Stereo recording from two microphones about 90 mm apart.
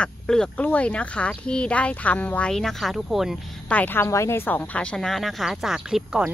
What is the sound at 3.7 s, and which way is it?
Speech, 20° left (ahead or behind).